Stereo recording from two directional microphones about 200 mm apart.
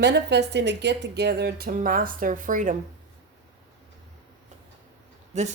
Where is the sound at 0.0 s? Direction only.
60° right (ahead or behind); by 2.7 s 40° right (ahead or behind).